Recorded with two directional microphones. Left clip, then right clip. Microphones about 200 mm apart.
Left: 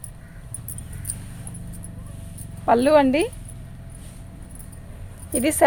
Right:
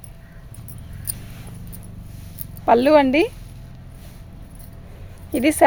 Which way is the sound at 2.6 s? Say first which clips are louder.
Right 2 dB; 35° right (ahead or behind).